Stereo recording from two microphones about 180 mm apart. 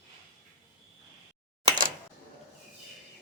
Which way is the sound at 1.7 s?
50° right (ahead or behind).